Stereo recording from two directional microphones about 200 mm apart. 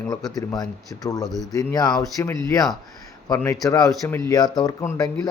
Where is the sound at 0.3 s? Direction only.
20° left (ahead or behind).